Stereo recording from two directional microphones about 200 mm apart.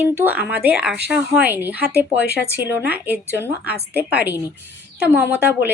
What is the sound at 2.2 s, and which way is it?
Speech, 55° right (ahead or behind).